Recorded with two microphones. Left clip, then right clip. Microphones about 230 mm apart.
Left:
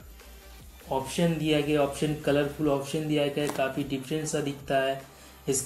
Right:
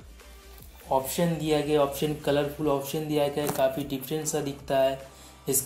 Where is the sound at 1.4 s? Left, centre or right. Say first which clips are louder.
Right 2 dB; right.